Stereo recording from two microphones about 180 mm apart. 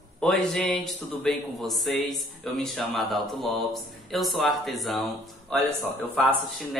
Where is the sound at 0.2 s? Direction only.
Centre (ahead or behind).